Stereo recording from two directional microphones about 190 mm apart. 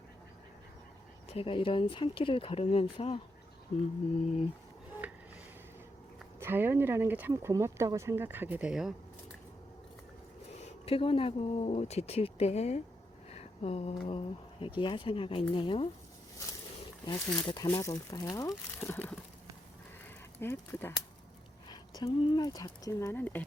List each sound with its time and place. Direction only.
1.3 s speech: 30° left (ahead or behind)
6.4 s speech: 10° right (ahead or behind)
10.5 s speech: 35° left (ahead or behind)
17.3 s speech: 25° left (ahead or behind)
20.4 s speech: 10° left (ahead or behind)
21.7 s speech: 20° left (ahead or behind)